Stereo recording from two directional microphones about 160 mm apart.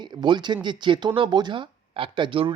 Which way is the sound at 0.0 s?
30° right (ahead or behind).